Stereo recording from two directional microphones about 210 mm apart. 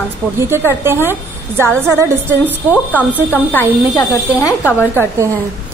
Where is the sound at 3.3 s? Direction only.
10° left (ahead or behind).